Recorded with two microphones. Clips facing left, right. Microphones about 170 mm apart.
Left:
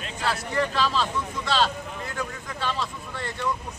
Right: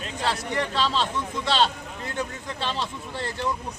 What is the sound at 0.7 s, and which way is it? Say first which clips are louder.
Speech: even; 25° right (ahead or behind).